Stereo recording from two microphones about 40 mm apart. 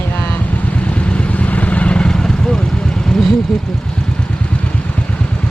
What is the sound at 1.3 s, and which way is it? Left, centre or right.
Vehicle, left.